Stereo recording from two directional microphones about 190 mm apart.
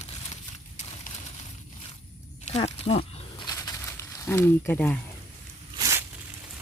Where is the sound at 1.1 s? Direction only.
45° left (ahead or behind).